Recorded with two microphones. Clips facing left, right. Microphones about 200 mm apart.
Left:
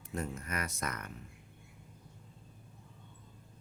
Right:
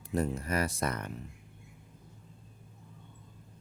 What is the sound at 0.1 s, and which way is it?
Speech, 35° right (ahead or behind).